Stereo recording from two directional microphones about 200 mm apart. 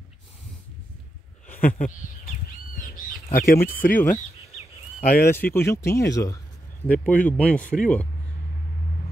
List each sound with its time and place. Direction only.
1.6 s speech: 45° left (ahead or behind)
3.3 s speech: 45° left (ahead or behind)
5.0 s speech: 45° left (ahead or behind)
5.3 s speech: 10° left (ahead or behind)